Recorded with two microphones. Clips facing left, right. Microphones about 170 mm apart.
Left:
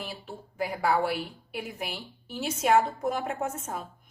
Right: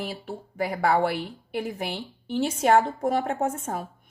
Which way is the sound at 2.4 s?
55° right (ahead or behind).